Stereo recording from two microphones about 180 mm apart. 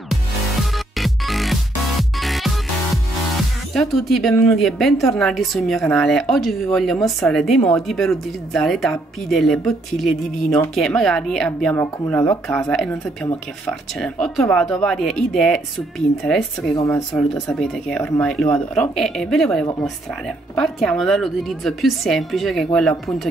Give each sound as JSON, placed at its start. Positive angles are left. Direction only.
{"t": 0.1, "sound": "music", "side_deg": 0}
{"t": 3.7, "sound": "speech", "side_deg": 0}
{"t": 11.7, "sound": "speech", "side_deg": 15}
{"t": 12.4, "sound": "speech", "side_deg": 0}
{"t": 16.7, "sound": "speech", "side_deg": 15}
{"t": 17.1, "sound": "speech", "side_deg": 5}